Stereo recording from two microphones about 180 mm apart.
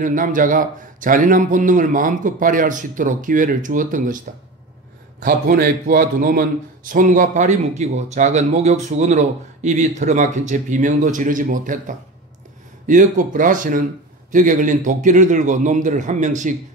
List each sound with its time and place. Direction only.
0.0 s a man's voice: 45° right (ahead or behind)
5.2 s a man's voice: 55° right (ahead or behind)